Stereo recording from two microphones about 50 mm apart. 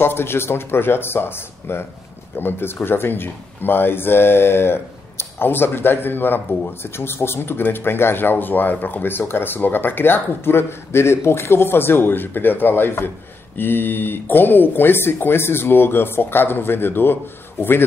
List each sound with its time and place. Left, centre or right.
0.0 s speech: left